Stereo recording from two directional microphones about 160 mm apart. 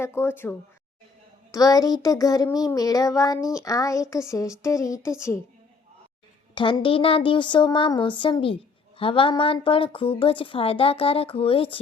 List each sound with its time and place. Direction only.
0.0 s speech: 15° left (ahead or behind)
1.5 s child singing: 25° left (ahead or behind)
6.5 s speech: 30° left (ahead or behind)